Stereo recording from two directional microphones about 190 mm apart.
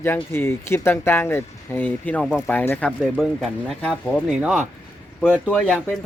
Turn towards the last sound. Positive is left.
turn(degrees=5)  # may be behind; listen again after turning